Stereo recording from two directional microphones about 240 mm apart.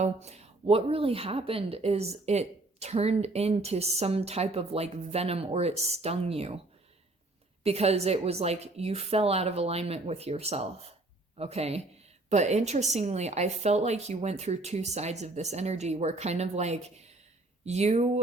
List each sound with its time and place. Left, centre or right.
0.0 s speech: right
7.6 s speech: right